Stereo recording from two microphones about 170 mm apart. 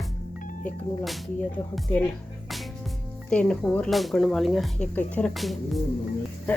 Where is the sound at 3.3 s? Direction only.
5° left (ahead or behind).